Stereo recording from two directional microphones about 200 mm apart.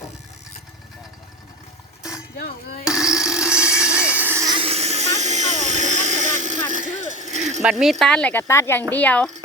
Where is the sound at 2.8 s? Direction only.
5° right (ahead or behind); by 7.6 s 35° right (ahead or behind).